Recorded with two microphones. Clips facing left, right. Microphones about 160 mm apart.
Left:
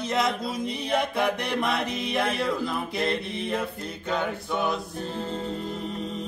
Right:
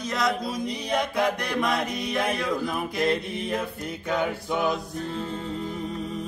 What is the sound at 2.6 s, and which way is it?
Mantra, 15° right (ahead or behind).